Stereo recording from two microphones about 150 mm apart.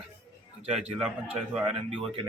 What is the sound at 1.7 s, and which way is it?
Speech, 40° right (ahead or behind).